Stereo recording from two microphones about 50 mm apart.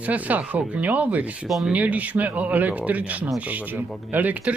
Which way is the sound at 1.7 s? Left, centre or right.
Right.